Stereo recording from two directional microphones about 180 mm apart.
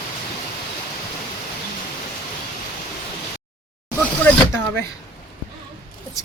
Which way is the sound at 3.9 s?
10° left (ahead or behind).